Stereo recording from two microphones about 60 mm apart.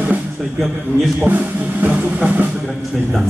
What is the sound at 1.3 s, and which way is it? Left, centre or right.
Speech, right.